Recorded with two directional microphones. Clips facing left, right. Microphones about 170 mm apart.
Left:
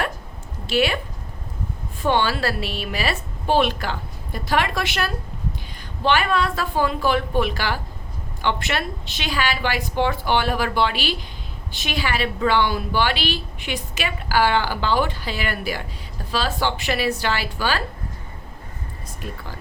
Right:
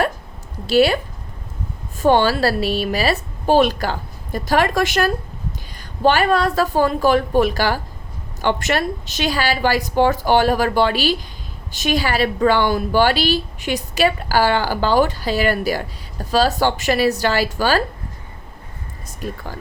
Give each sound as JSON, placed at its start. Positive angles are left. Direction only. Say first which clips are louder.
{"t": 0.7, "sound": "speech", "louder": "right 6 dB", "side_deg": -35}
{"t": 2.0, "sound": "speech", "louder": "right 6 dB", "side_deg": -40}
{"t": 19.2, "sound": "speech", "louder": "right 6 dB", "side_deg": -40}